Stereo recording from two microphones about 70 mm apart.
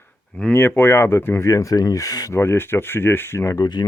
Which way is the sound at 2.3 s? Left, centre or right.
Left.